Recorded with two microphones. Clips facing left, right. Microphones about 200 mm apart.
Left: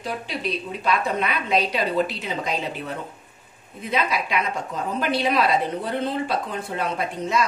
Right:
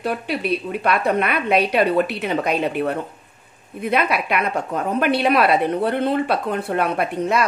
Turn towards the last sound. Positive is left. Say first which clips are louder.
# right 4 dB
turn(degrees=-60)  # may be behind; listen again after turning